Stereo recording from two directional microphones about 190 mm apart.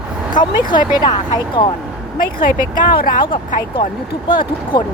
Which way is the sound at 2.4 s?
50° left (ahead or behind).